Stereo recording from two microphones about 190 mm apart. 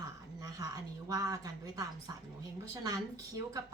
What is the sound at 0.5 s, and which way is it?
Speech, 15° right (ahead or behind).